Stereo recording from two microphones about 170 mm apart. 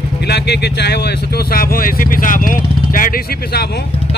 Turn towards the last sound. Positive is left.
turn(degrees=55)  # may be behind; listen again after turning